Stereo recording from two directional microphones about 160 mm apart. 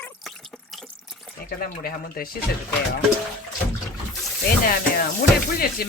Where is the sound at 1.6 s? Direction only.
65° left (ahead or behind).